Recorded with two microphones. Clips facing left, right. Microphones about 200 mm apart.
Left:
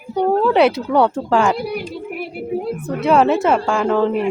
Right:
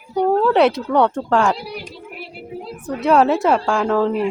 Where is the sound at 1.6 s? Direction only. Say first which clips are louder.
Left 7 dB; 55° left (ahead or behind).